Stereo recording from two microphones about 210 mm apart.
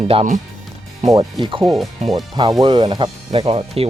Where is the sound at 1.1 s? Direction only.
20° right (ahead or behind).